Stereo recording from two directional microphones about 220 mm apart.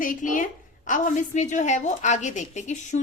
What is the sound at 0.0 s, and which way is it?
A woman's voice, 35° left (ahead or behind).